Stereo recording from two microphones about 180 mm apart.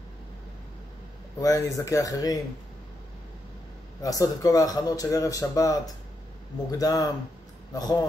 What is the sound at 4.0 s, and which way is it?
A man's voice, 20° left (ahead or behind).